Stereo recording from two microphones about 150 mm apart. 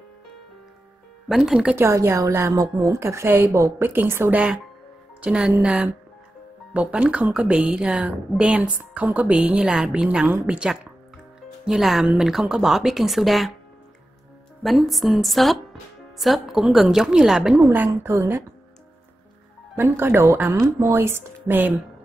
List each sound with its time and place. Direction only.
1.3 s speech: centre (ahead or behind)
1.8 s a woman's voice: 15° right (ahead or behind); by 13.5 s centre (ahead or behind)
14.6 s speech: centre (ahead or behind)
17.7 s a woman's voice: 20° right (ahead or behind)
19.8 s a woman's voice: 15° right (ahead or behind)